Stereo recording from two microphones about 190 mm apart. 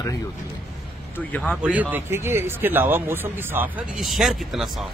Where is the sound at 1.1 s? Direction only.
5° left (ahead or behind).